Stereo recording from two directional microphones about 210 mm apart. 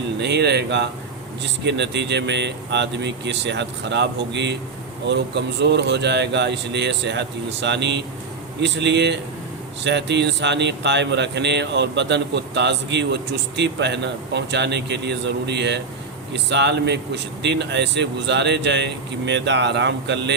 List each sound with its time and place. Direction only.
0.2 s speech: 55° right (ahead or behind)